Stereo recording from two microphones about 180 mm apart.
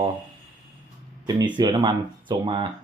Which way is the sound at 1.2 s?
25° right (ahead or behind).